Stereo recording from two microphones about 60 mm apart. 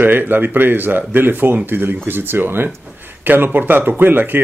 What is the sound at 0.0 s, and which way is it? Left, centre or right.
Speech, right.